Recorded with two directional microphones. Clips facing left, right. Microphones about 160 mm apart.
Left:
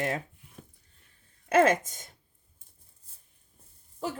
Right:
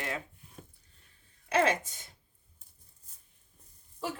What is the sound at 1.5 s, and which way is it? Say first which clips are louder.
Speech: left 5 dB; 50° left (ahead or behind).